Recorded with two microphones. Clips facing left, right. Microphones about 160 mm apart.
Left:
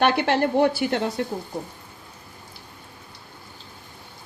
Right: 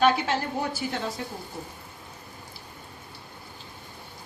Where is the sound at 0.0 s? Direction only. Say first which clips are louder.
Left 3 dB; 65° left (ahead or behind).